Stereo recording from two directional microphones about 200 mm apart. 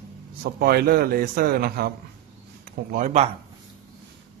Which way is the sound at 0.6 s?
50° right (ahead or behind).